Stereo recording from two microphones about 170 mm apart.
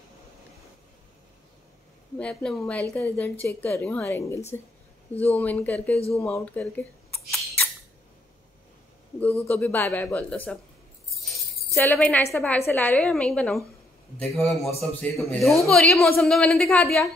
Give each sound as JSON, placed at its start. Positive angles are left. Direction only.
{"t": 2.1, "sound": "a man's voice", "side_deg": 5}
{"t": 5.1, "sound": "speech", "side_deg": 35}
{"t": 5.4, "sound": "a woman's voice", "side_deg": 10}
{"t": 5.9, "sound": "speech", "side_deg": 35}
{"t": 6.3, "sound": "a sound", "side_deg": 10}
{"t": 9.4, "sound": "a woman's voice", "side_deg": 10}
{"t": 11.8, "sound": "a woman's voice", "side_deg": 10}